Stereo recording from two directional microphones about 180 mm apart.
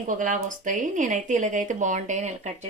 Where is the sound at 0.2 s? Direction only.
45° right (ahead or behind).